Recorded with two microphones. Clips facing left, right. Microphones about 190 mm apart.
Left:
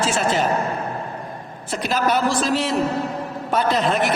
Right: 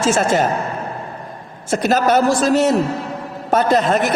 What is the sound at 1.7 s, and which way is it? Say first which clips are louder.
A woman's voice: right 6 dB; 45° right (ahead or behind).